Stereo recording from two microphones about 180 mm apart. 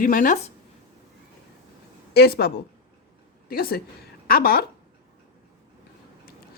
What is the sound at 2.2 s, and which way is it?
A woman's voice, 60° left (ahead or behind).